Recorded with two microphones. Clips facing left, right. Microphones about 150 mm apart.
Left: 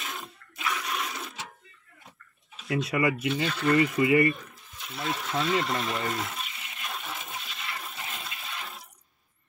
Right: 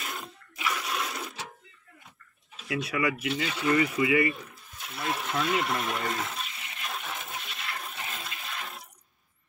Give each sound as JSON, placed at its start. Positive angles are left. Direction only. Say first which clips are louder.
{"t": 0.0, "sound": "bathtub", "louder": "even", "side_deg": 0}
{"t": 2.7, "sound": "speech", "louder": "left 3 dB", "side_deg": 25}
{"t": 3.6, "sound": "speech", "louder": "left 2 dB", "side_deg": 40}
{"t": 4.8, "sound": "speech", "louder": "even", "side_deg": -5}
{"t": 5.4, "sound": "water", "louder": "left 2 dB", "side_deg": -5}